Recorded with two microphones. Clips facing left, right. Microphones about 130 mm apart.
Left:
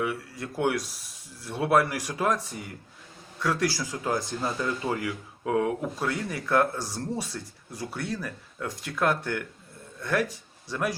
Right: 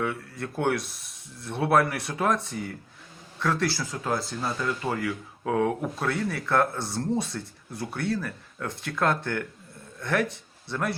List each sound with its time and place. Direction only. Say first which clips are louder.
0.0 s speech: even; 10° left (ahead or behind)